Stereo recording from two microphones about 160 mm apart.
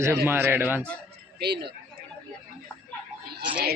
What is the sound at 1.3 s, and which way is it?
Speech, 90° right.